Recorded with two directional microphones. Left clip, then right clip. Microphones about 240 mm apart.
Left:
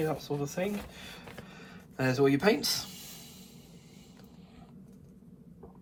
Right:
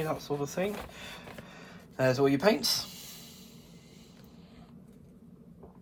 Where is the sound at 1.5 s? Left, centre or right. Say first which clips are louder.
Right 1 dB; right; by 3.2 s centre.